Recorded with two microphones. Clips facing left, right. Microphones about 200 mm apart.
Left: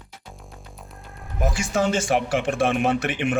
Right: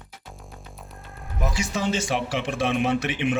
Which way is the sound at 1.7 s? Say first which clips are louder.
Left 6 dB; 50° left (ahead or behind).